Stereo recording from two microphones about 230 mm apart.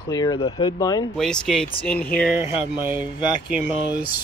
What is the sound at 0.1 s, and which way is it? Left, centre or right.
Speech, centre.